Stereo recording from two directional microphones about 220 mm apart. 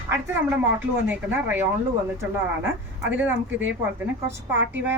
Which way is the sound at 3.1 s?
10° right (ahead or behind).